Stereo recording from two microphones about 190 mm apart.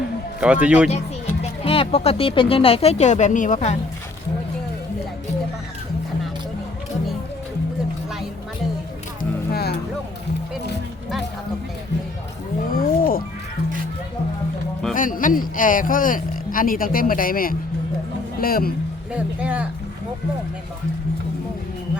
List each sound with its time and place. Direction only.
0.3 s speech: 5° right (ahead or behind)
1.6 s speech: 30° left (ahead or behind)
9.5 s music: 55° left (ahead or behind)
12.7 s music: 50° left (ahead or behind)
14.9 s speech: 45° left (ahead or behind)
19.1 s speech: 5° right (ahead or behind)